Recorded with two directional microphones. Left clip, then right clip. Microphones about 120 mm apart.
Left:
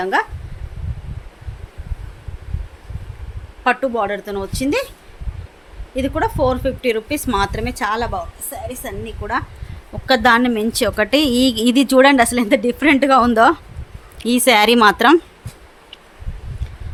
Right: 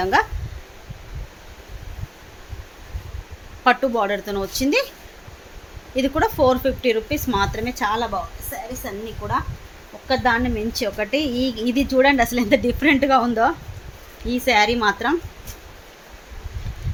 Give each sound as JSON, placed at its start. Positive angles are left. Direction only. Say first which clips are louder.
{"t": 0.0, "sound": "a woman's voice", "louder": "even", "side_deg": 10}
{"t": 3.6, "sound": "a woman's voice", "louder": "even", "side_deg": 10}
{"t": 6.0, "sound": "a woman's voice", "louder": "even", "side_deg": 10}
{"t": 6.8, "sound": "a woman's voice", "louder": "left 1 dB", "side_deg": 30}
{"t": 10.2, "sound": "a woman's voice", "louder": "left 6 dB", "side_deg": 85}
{"t": 12.3, "sound": "speech", "louder": "left 2 dB", "side_deg": 40}
{"t": 14.3, "sound": "a woman's voice", "louder": "left 5 dB", "side_deg": 90}